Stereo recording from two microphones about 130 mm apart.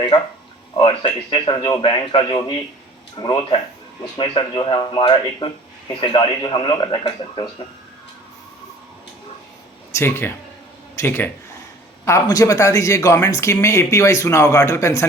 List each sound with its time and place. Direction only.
0.8 s a man's voice: 40° left (ahead or behind)
9.9 s speech: 20° left (ahead or behind)